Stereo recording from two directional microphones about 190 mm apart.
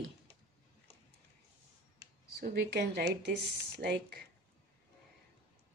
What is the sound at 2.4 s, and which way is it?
Speech, 60° right (ahead or behind).